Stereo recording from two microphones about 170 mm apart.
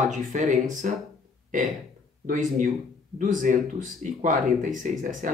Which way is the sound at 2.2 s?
50° right (ahead or behind).